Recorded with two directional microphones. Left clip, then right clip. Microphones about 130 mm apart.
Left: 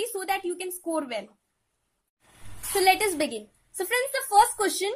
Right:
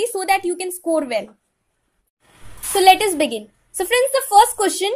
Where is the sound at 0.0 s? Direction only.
25° right (ahead or behind).